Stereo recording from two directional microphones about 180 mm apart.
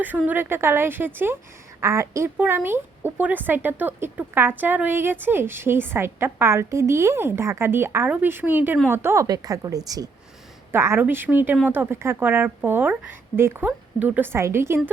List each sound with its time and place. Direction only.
0.3 s a woman's voice: 10° right (ahead or behind)